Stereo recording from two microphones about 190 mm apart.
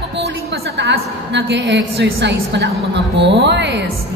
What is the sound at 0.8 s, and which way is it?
A woman's voice, 65° right (ahead or behind).